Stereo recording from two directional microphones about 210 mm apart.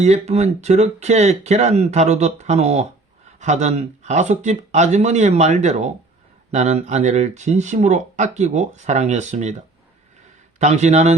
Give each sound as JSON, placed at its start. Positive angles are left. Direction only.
{"t": 0.0, "sound": "speech", "side_deg": -30}
{"t": 10.6, "sound": "speech", "side_deg": -35}